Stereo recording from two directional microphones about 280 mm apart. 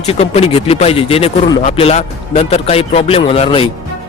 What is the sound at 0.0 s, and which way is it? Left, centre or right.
Speech, left.